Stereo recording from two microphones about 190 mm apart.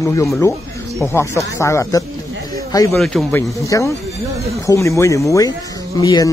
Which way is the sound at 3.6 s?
15° left (ahead or behind).